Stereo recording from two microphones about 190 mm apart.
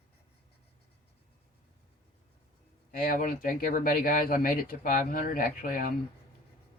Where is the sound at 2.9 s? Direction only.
45° left (ahead or behind).